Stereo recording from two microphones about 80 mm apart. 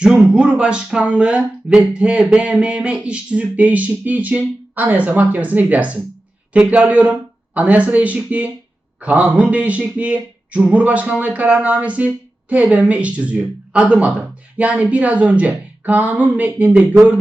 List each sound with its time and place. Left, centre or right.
0.0 s speech: centre